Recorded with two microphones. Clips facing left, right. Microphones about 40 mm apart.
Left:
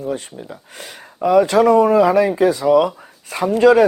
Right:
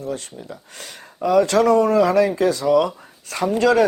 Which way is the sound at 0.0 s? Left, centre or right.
Centre.